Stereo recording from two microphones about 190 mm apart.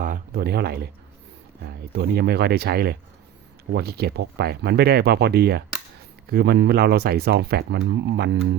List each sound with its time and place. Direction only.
0.0 s speech: 50° right (ahead or behind); by 8.4 s 65° right (ahead or behind)